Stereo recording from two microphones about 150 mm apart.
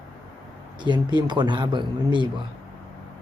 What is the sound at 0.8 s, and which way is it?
Speech, 30° right (ahead or behind).